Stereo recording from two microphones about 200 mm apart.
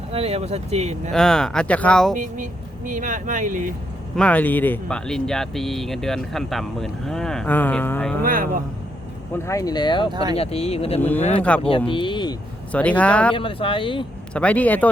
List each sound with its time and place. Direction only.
0.1 s speech: 30° right (ahead or behind)
1.1 s speech: 5° left (ahead or behind)
2.1 s speech: 40° right (ahead or behind)
4.2 s speech: 5° left (ahead or behind)
8.2 s speech: 45° right (ahead or behind)
9.3 s speech: 15° left (ahead or behind)
10.1 s speech: 20° right (ahead or behind)
10.3 s speech: 30° left (ahead or behind)
11.9 s vehicle: 25° left (ahead or behind)
12.7 s speech: 5° left (ahead or behind)
13.3 s speech: 25° left (ahead or behind)
14.3 s speech: 5° left (ahead or behind)